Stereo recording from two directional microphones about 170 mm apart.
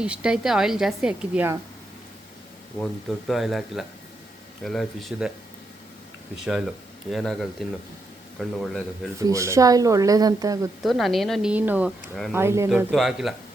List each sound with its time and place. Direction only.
0.0 s a woman's voice: 5° right (ahead or behind)
2.8 s speech: 15° left (ahead or behind)
3.2 s a woman's voice: centre (ahead or behind)
6.4 s a woman's voice: 5° right (ahead or behind)
9.2 s speech: 20° right (ahead or behind)
10.8 s a woman's voice: centre (ahead or behind)
12.3 s speech: 15° right (ahead or behind)
12.9 s a woman's voice: centre (ahead or behind)